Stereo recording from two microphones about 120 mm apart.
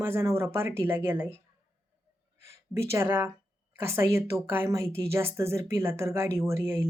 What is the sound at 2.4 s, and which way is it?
A woman's voice, 25° right (ahead or behind).